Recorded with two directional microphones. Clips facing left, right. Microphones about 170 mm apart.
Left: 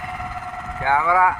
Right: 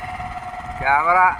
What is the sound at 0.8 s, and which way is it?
Speech, 10° right (ahead or behind).